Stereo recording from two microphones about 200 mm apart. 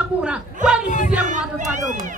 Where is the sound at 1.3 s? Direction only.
40° right (ahead or behind).